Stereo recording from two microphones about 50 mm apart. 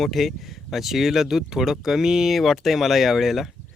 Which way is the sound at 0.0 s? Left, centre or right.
Centre.